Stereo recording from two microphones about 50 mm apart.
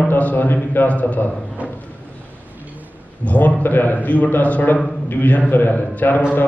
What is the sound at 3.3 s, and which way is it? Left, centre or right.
A man's voice, left.